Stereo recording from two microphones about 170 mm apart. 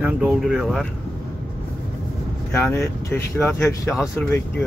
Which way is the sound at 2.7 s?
15° left (ahead or behind).